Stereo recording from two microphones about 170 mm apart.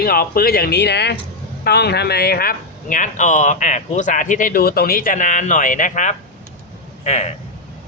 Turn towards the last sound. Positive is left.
turn(degrees=40)  # may be behind; listen again after turning